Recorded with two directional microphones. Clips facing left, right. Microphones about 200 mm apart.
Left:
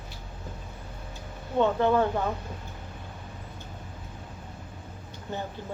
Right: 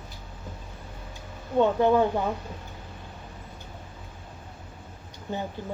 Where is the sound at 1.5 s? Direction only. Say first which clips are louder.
Right 2 dB; 15° right (ahead or behind).